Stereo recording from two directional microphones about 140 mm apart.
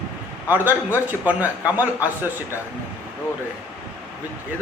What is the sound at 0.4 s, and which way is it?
A man's voice, 10° right (ahead or behind).